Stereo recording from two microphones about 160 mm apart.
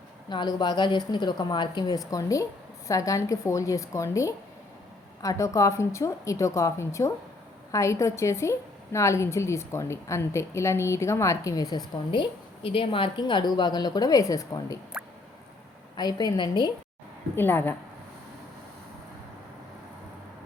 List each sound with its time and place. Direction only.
0.3 s a woman's voice: 25° left (ahead or behind)
16.0 s a woman's voice: 25° left (ahead or behind)
17.3 s a woman's voice: 10° left (ahead or behind)